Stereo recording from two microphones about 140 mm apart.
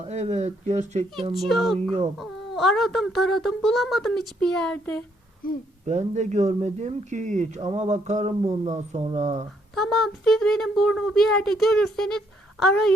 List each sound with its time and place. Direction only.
0.0 s speech: 50° right (ahead or behind)
1.3 s a woman's voice: centre (ahead or behind)
5.4 s speech: 90° left
5.8 s speech: 55° right (ahead or behind)
9.7 s a woman's voice: centre (ahead or behind)